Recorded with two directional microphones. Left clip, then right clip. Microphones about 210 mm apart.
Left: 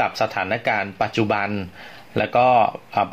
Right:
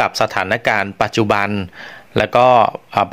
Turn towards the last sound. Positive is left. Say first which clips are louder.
# right 5 dB
turn(degrees=-45)  # may be behind; listen again after turning